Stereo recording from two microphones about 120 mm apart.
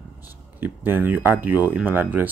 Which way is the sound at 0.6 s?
15° right (ahead or behind).